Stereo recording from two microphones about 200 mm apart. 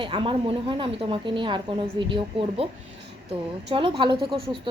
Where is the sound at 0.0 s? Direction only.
25° right (ahead or behind).